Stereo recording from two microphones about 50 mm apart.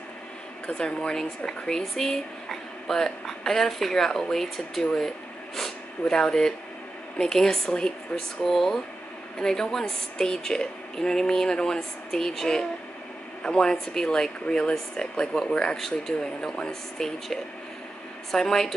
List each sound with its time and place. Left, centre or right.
0.7 s a woman's voice: centre